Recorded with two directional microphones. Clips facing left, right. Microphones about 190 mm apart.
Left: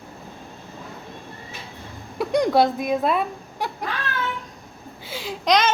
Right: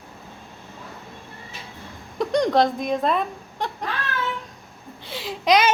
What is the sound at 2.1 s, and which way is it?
Speech, 5° left (ahead or behind).